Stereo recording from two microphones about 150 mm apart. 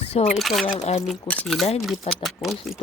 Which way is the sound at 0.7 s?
45° left (ahead or behind).